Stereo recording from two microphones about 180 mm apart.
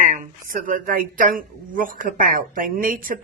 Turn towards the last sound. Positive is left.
turn(degrees=-50)  # may be behind; listen again after turning